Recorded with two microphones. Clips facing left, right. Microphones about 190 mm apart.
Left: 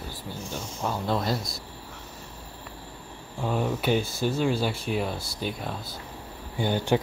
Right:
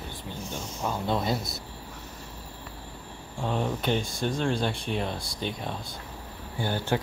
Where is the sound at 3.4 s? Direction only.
5° left (ahead or behind).